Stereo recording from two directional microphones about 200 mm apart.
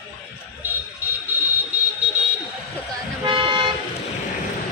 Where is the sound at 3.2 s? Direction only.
25° right (ahead or behind).